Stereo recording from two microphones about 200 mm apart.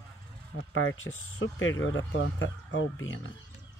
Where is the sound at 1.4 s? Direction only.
70° left (ahead or behind).